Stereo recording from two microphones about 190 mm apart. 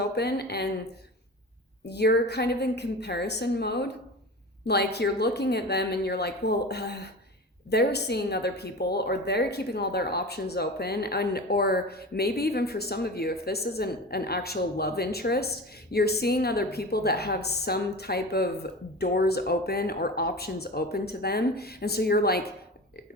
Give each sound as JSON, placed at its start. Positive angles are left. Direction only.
{"t": 0.0, "sound": "a woman's voice", "side_deg": 60}
{"t": 1.8, "sound": "a woman's voice", "side_deg": 60}